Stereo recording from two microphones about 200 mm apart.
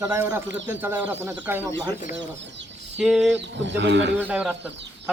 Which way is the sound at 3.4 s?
60° right (ahead or behind).